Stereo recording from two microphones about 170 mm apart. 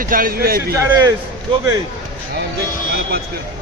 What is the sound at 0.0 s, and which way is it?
Speech, 55° right (ahead or behind).